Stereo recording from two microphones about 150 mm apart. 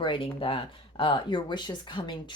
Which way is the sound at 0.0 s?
35° left (ahead or behind).